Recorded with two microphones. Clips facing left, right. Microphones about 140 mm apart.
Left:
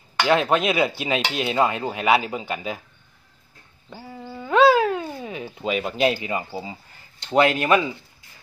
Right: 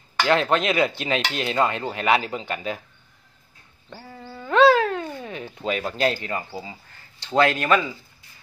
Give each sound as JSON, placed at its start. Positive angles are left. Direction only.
{"t": 0.2, "sound": "cutlery", "side_deg": 10}
{"t": 3.9, "sound": "a sound", "side_deg": 10}
{"t": 6.1, "sound": "cutlery", "side_deg": 10}
{"t": 6.5, "sound": "speech", "side_deg": 20}
{"t": 7.3, "sound": "cutlery", "side_deg": 15}